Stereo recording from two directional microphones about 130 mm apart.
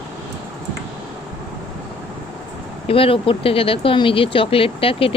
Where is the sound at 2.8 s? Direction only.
45° left (ahead or behind).